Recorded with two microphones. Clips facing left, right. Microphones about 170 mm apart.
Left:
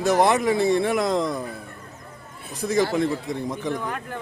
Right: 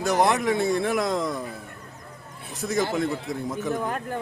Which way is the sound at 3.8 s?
40° right (ahead or behind).